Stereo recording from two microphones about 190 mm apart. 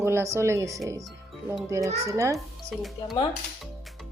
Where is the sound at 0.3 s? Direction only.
15° right (ahead or behind).